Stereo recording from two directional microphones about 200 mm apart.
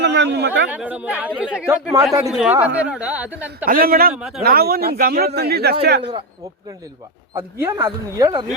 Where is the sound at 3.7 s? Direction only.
45° right (ahead or behind).